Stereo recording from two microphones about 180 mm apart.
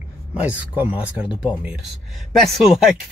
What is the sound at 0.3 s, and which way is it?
Speech, 10° right (ahead or behind).